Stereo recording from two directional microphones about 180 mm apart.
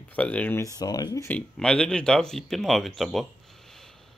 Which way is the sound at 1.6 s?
5° left (ahead or behind).